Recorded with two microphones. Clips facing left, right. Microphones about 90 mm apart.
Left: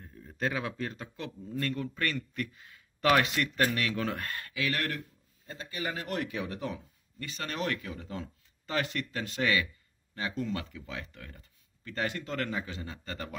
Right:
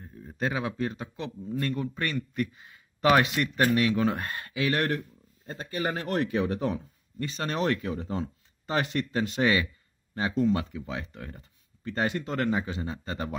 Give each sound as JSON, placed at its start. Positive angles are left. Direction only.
{"t": 0.3, "sound": "speech", "side_deg": -15}
{"t": 5.5, "sound": "speech", "side_deg": -40}